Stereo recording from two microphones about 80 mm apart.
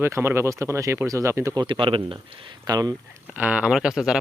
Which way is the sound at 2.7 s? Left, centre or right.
Right.